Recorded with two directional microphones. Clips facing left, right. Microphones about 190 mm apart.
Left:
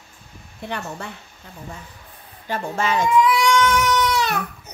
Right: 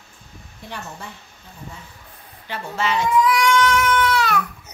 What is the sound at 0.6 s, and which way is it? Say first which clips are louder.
Speech: left 5 dB; 65° left (ahead or behind).